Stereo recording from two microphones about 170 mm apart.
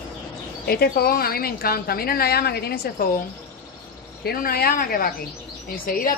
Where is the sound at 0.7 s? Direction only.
65° left (ahead or behind).